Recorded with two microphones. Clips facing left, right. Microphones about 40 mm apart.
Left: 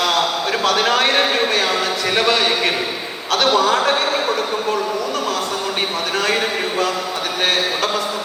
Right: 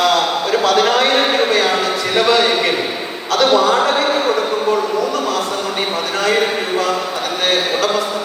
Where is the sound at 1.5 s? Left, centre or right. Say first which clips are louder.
Right 3 dB; right.